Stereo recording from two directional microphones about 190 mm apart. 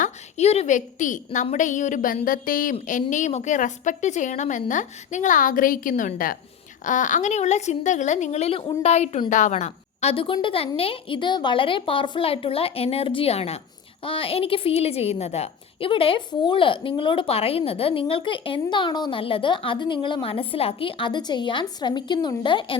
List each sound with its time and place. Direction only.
0.0 s a woman's voice: 35° left (ahead or behind)